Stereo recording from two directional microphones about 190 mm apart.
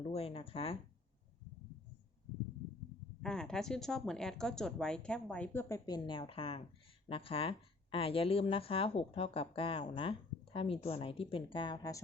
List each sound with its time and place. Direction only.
0.0 s speech: 30° left (ahead or behind)
3.2 s a woman's voice: 5° left (ahead or behind)